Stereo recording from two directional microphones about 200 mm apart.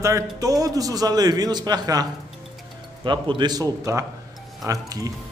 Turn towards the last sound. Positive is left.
turn(degrees=-15)  # may be behind; listen again after turning